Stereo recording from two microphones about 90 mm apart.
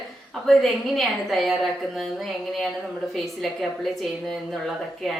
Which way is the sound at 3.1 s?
Centre (ahead or behind).